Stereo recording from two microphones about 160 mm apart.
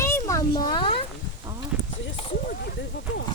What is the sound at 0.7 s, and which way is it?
Speech, 35° left (ahead or behind).